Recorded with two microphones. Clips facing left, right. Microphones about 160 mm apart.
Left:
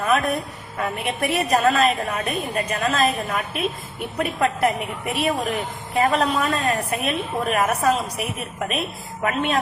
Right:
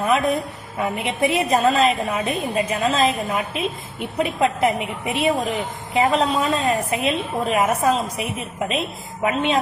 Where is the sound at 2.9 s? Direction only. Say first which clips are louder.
Right 2 dB; 20° right (ahead or behind).